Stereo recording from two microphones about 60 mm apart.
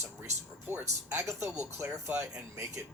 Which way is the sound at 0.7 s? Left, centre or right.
Right.